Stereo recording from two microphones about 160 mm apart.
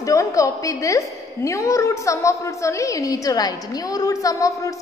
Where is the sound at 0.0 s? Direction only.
20° left (ahead or behind).